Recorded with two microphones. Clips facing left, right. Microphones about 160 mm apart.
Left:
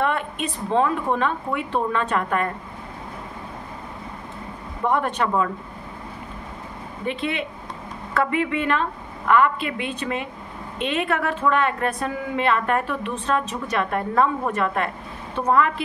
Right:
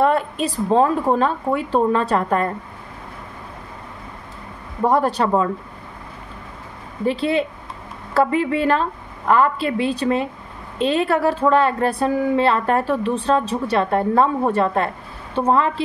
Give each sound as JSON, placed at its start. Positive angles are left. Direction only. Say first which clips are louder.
{"t": 0.0, "sound": "a woman's voice", "louder": "right 6 dB", "side_deg": -35}
{"t": 4.8, "sound": "a woman's voice", "louder": "right 5 dB", "side_deg": -35}
{"t": 7.1, "sound": "a woman's voice", "louder": "right 7 dB", "side_deg": -35}